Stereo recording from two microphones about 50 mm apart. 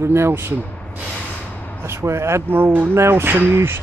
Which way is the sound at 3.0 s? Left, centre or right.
Right.